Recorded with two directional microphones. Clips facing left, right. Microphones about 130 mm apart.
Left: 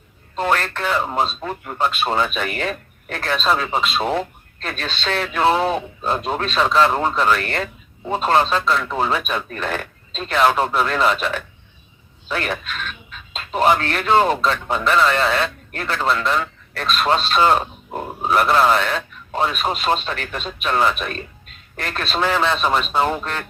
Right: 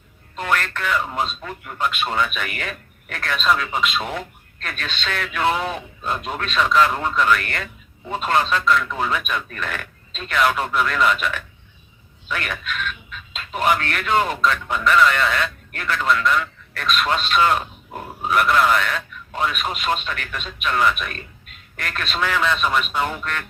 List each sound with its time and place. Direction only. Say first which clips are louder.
0.3 s speech: left 3 dB; 30° left (ahead or behind)